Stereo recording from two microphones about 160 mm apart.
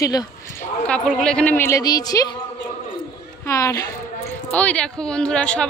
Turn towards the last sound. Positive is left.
turn(degrees=5)  # may be behind; listen again after turning